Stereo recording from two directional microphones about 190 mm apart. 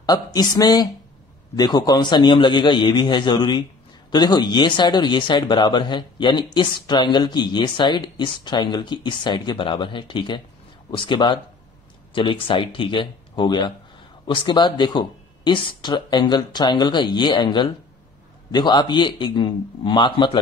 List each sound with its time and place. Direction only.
0.0 s speech: 20° left (ahead or behind)